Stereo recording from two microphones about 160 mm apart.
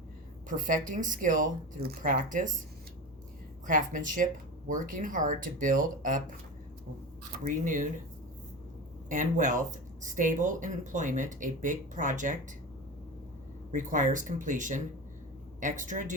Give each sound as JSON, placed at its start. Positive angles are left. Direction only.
{"t": 0.4, "sound": "speech", "side_deg": -55}
{"t": 3.7, "sound": "speech", "side_deg": -55}
{"t": 7.3, "sound": "speech", "side_deg": -55}
{"t": 9.0, "sound": "speech", "side_deg": -55}
{"t": 13.7, "sound": "speech", "side_deg": -55}